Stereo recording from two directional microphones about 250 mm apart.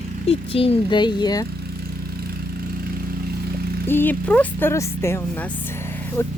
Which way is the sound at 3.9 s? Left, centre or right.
Centre.